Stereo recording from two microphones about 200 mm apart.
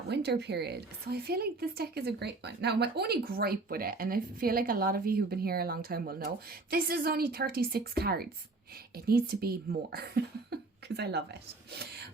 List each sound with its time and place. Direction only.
0.1 s a woman's voice: 55° right (ahead or behind)